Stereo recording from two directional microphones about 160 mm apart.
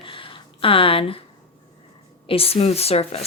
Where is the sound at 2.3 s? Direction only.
35° left (ahead or behind).